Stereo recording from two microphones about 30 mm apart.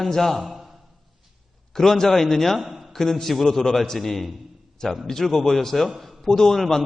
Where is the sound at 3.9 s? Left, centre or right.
Centre.